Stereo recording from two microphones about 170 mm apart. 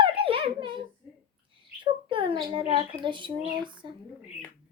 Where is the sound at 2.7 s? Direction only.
30° right (ahead or behind).